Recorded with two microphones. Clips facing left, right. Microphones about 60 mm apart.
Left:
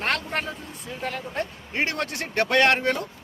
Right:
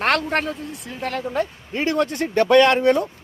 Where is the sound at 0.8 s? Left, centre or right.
Right.